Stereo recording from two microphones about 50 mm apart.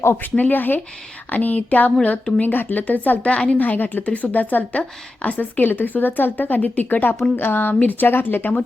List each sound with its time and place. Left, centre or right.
0.2 s a woman's voice: left
3.6 s a woman's voice: left